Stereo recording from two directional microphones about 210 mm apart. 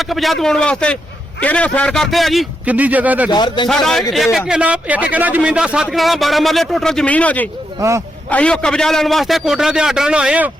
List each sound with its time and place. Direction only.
0.0 s a man's voice: centre (ahead or behind)
3.2 s a man's voice: 20° left (ahead or behind)
3.7 s a man's voice: centre (ahead or behind)
7.8 s speech: 15° right (ahead or behind)
8.3 s a man's voice: 5° left (ahead or behind)